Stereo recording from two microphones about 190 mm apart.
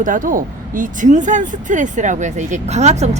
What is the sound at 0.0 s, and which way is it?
Speech, 45° right (ahead or behind).